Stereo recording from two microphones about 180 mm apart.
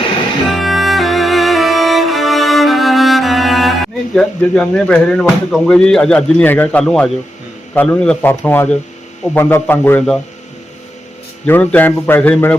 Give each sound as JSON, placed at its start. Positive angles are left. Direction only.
{"t": 0.4, "sound": "music", "side_deg": 0}
{"t": 7.7, "sound": "a man's voice", "side_deg": 10}
{"t": 11.4, "sound": "a man's voice", "side_deg": 10}